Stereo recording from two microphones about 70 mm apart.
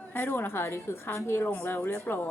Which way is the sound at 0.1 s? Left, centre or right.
Left.